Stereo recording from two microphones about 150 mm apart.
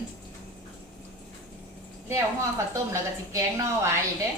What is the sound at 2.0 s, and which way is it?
A woman's voice, 20° right (ahead or behind).